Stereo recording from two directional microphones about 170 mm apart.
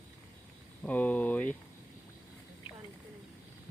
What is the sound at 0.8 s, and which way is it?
Speech, 10° left (ahead or behind).